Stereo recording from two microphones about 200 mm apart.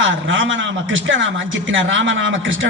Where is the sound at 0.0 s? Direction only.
70° right (ahead or behind).